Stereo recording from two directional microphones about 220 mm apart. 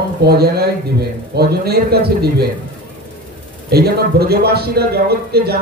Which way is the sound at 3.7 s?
45° right (ahead or behind).